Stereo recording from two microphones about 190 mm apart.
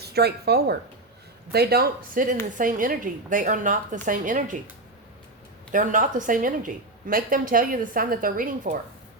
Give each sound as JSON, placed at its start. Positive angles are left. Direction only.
{"t": 0.0, "sound": "a woman's voice", "side_deg": -60}
{"t": 5.7, "sound": "a woman's voice", "side_deg": -45}